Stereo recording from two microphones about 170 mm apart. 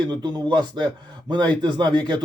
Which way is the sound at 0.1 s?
25° right (ahead or behind).